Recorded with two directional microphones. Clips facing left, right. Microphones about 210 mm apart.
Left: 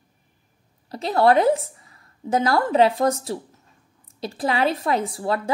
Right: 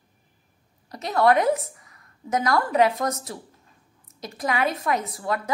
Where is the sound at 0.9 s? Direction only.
30° left (ahead or behind).